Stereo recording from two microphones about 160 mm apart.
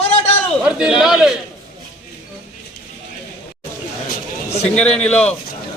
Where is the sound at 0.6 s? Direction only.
5° right (ahead or behind).